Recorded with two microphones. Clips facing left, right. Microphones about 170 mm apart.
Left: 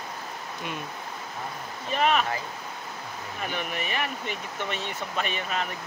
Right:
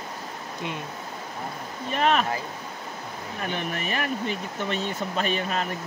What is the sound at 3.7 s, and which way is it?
Speech, 45° right (ahead or behind).